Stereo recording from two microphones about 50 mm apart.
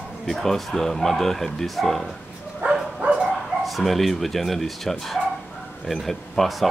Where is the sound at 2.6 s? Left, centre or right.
Right.